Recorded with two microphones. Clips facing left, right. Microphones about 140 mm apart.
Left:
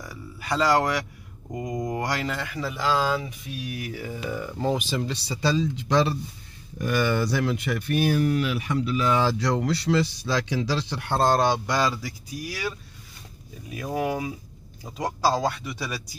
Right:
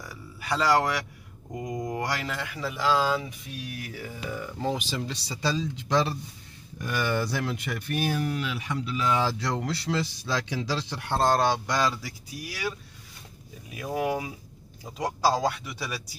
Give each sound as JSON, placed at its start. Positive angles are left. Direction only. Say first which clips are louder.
{"t": 0.0, "sound": "a sound", "louder": "left 3 dB", "side_deg": -5}
{"t": 1.6, "sound": "speech", "louder": "left 3 dB", "side_deg": 10}
{"t": 2.0, "sound": "speech", "louder": "left 3 dB", "side_deg": -5}
{"t": 4.7, "sound": "speech", "louder": "left 4 dB", "side_deg": 60}
{"t": 6.9, "sound": "speech", "louder": "left 4 dB", "side_deg": 85}
{"t": 11.2, "sound": "speech", "louder": "left 2 dB", "side_deg": 20}
{"t": 11.6, "sound": "speech", "louder": "left 2 dB", "side_deg": 5}
{"t": 12.4, "sound": "speech", "louder": "left 2 dB", "side_deg": -5}
{"t": 13.7, "sound": "speech", "louder": "left 1 dB", "side_deg": -5}